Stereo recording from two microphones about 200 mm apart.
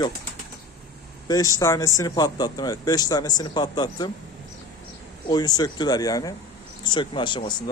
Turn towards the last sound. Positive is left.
turn(degrees=25)  # may be behind; listen again after turning